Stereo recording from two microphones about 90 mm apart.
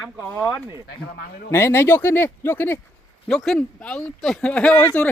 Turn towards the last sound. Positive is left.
turn(degrees=15)  # may be behind; listen again after turning